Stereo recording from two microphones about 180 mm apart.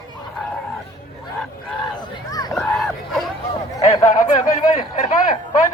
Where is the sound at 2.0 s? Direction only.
20° left (ahead or behind).